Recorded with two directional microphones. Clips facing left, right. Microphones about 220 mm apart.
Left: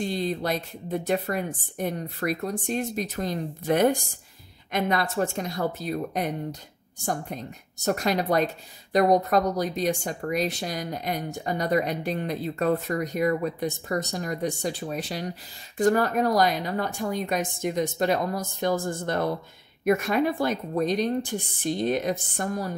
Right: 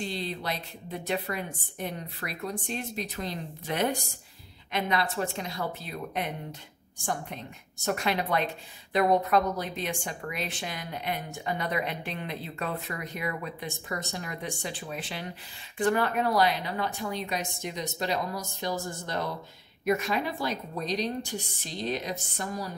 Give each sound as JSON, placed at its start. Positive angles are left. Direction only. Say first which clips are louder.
{"t": 0.0, "sound": "a woman's voice", "louder": "left 6 dB", "side_deg": 45}
{"t": 7.8, "sound": "a woman's voice", "louder": "left 4 dB", "side_deg": 40}